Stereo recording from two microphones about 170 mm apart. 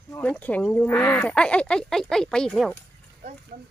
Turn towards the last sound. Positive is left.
turn(degrees=-50)  # may be behind; listen again after turning